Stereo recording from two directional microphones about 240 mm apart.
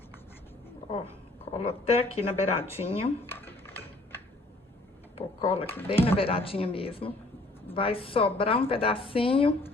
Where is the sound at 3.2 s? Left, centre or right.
Centre.